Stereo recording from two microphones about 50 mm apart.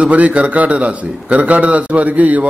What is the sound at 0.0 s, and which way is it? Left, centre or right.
A man's voice, right.